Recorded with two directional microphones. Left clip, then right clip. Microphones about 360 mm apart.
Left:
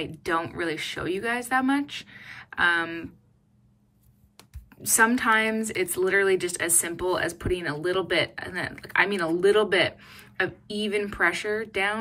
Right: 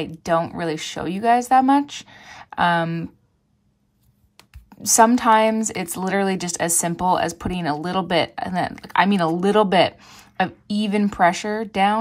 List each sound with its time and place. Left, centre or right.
0.2 s a woman's voice: centre
4.8 s a woman's voice: centre